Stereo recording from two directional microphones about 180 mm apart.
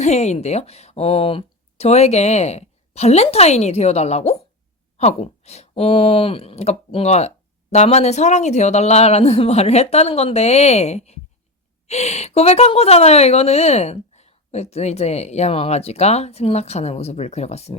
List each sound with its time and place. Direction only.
0.0 s speech: 40° left (ahead or behind)